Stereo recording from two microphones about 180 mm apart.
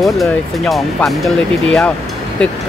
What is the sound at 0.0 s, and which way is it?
Speech, centre (ahead or behind).